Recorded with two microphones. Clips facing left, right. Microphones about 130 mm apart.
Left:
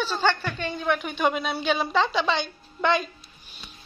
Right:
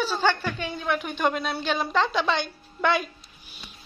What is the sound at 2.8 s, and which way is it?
Music, 5° right (ahead or behind).